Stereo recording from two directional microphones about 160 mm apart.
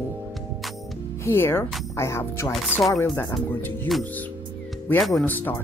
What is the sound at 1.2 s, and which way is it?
Speech, 15° left (ahead or behind).